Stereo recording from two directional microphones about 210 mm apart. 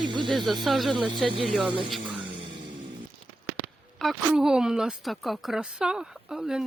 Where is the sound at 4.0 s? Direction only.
Centre (ahead or behind).